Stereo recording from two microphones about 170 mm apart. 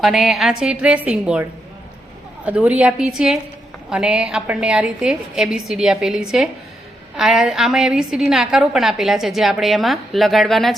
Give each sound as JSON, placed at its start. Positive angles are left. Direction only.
{"t": 0.0, "sound": "a woman's voice", "side_deg": 0}